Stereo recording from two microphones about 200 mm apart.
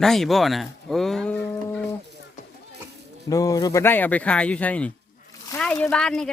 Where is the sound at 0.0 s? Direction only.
Centre (ahead or behind).